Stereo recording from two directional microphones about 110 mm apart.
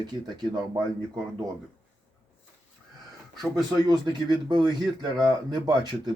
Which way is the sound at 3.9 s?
40° right (ahead or behind).